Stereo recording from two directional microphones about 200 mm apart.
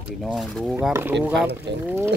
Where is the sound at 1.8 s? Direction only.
10° right (ahead or behind).